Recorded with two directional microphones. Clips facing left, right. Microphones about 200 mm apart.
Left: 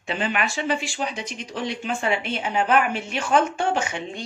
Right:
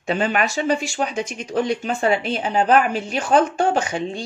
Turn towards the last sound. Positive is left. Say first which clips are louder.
# right 4 dB
turn(degrees=-35)  # may be behind; listen again after turning